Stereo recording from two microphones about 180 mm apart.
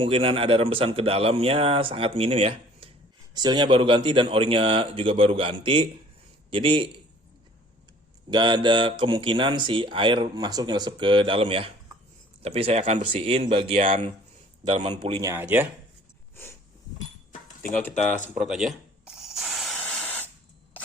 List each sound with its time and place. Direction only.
0.0 s speech: 30° right (ahead or behind)
8.3 s speech: 25° right (ahead or behind)
15.2 s speech: 15° right (ahead or behind)
16.3 s a sound: 10° left (ahead or behind)
17.7 s speech: 10° left (ahead or behind)
18.3 s spray: centre (ahead or behind)